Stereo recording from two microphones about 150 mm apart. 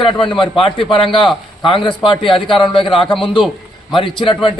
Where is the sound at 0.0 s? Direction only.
35° left (ahead or behind).